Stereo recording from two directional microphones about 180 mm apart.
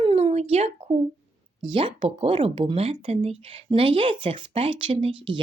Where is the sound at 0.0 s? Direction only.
30° right (ahead or behind).